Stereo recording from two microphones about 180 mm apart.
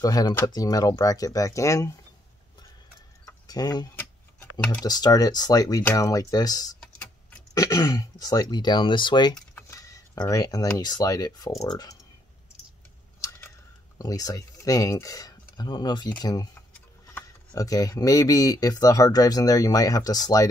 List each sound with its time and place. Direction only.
0.0 s speech: 20° left (ahead or behind)
3.4 s speech: 20° left (ahead or behind)
3.9 s tick-tock: 10° left (ahead or behind)
4.8 s speech: 20° left (ahead or behind)
6.8 s typing: 5° left (ahead or behind)
7.5 s speech: 20° left (ahead or behind)
9.3 s typing: 15° left (ahead or behind)
10.8 s speech: 20° left (ahead or behind)
13.2 s a sound: 15° left (ahead or behind)
13.9 s speech: 20° left (ahead or behind)
16.7 s speech: 10° left (ahead or behind)